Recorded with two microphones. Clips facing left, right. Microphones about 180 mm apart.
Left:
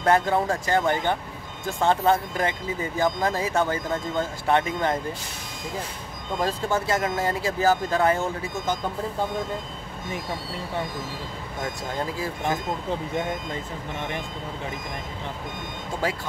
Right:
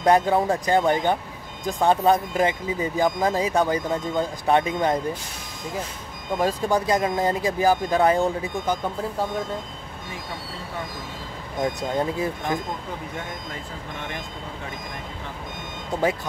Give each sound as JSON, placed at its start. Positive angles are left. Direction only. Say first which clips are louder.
{"t": 0.0, "sound": "speech", "louder": "right 3 dB", "side_deg": -15}
{"t": 6.3, "sound": "speech", "louder": "right 3 dB", "side_deg": -15}
{"t": 11.9, "sound": "speech", "louder": "right 5 dB", "side_deg": -20}